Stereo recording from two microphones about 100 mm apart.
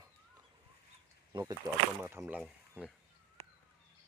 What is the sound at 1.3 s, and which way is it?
Speech, 45° right (ahead or behind).